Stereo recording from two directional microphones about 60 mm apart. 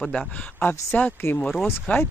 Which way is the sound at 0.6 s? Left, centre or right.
Left.